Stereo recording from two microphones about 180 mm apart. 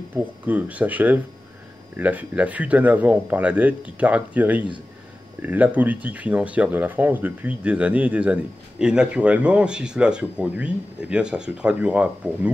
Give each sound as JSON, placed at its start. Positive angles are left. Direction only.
{"t": 0.1, "sound": "speech", "side_deg": -10}